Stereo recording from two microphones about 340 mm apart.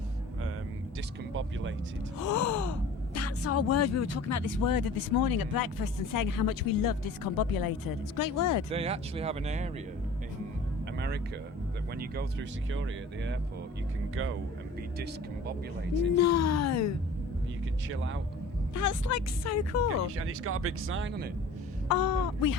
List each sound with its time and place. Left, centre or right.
1.3 s speech: right
2.1 s speech: left
8.7 s speech: centre
10.9 s vehicle: right
11.9 s speech: right
16.1 s speech: left
17.8 s speech: right
18.7 s speech: left
20.1 s speech: right
21.8 s speech: left